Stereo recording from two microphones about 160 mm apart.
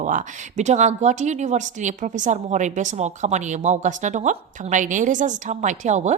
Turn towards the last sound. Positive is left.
turn(degrees=-45)  # may be behind; listen again after turning